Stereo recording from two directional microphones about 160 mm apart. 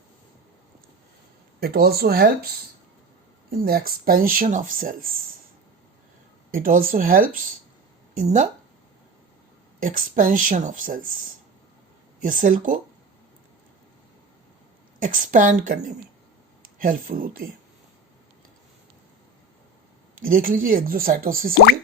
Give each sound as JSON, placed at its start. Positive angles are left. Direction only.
{"t": 1.6, "sound": "speech", "side_deg": -75}
{"t": 3.5, "sound": "speech", "side_deg": -70}
{"t": 6.5, "sound": "speech", "side_deg": -60}
{"t": 9.8, "sound": "speech", "side_deg": -60}
{"t": 14.9, "sound": "speech", "side_deg": -55}
{"t": 20.1, "sound": "speech", "side_deg": -60}